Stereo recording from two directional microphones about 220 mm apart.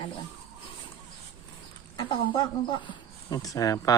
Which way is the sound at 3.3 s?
15° left (ahead or behind).